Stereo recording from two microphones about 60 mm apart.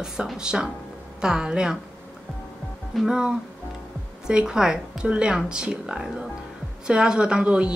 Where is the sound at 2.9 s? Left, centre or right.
Centre.